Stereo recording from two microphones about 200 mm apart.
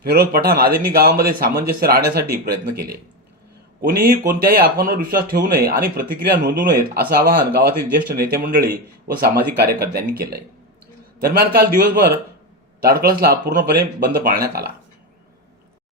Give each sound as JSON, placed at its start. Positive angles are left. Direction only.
{"t": 0.0, "sound": "speech", "side_deg": -50}